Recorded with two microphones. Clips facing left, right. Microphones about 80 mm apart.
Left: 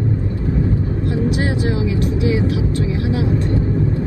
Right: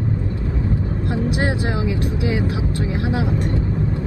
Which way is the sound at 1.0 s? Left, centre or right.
Right.